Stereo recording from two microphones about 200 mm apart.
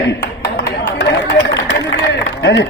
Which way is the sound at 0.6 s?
60° left (ahead or behind).